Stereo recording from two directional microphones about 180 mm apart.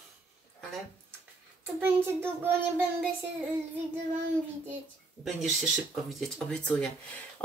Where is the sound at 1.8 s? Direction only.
10° right (ahead or behind).